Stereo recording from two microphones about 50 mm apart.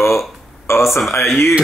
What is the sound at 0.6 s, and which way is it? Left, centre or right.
Speech, left.